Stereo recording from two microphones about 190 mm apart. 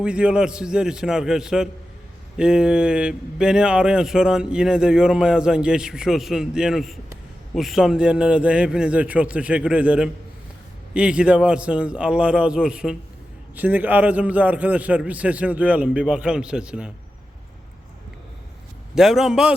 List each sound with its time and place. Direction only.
0.0 s a man's voice: 5° right (ahead or behind)
18.9 s speech: centre (ahead or behind)